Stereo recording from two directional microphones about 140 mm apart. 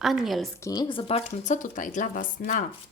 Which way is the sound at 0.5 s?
25° left (ahead or behind).